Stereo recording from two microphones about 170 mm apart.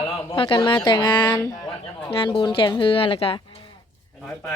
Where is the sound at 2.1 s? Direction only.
30° left (ahead or behind).